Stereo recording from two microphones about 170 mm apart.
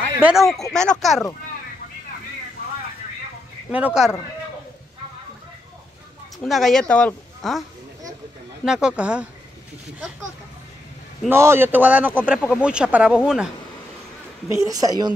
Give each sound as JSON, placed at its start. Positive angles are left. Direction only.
{"t": 0.2, "sound": "speech", "side_deg": 0}
{"t": 3.7, "sound": "speech", "side_deg": -5}
{"t": 6.4, "sound": "speech", "side_deg": 0}
{"t": 8.6, "sound": "speech", "side_deg": -5}
{"t": 11.2, "sound": "speech", "side_deg": -15}
{"t": 14.5, "sound": "a woman's voice", "side_deg": -20}